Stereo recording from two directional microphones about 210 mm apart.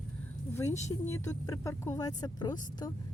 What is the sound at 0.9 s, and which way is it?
Speech, 15° left (ahead or behind).